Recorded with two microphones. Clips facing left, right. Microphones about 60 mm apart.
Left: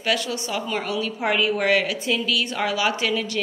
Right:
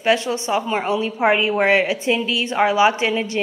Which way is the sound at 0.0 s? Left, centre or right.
Right.